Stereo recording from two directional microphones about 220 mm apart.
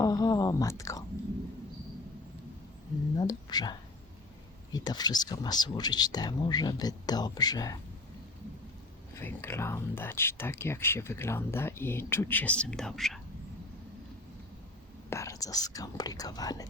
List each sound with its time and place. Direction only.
0.0 s whispering: 15° left (ahead or behind)
3.2 s speech: 20° left (ahead or behind)
9.1 s speech: 10° left (ahead or behind)
15.1 s speech: 15° left (ahead or behind)